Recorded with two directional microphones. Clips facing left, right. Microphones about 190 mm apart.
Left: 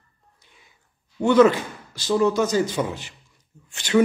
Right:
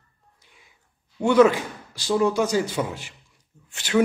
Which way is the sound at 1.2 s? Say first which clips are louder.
Left 1 dB; 10° right (ahead or behind).